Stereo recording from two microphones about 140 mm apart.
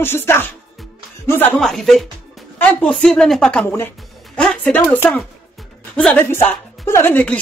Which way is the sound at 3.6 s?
15° left (ahead or behind).